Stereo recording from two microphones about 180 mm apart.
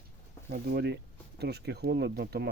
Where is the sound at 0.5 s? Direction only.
60° right (ahead or behind).